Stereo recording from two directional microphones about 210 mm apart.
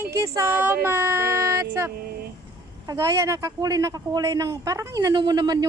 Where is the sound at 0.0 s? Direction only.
15° right (ahead or behind).